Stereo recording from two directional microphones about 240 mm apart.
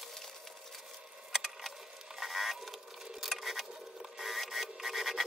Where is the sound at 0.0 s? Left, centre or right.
Centre.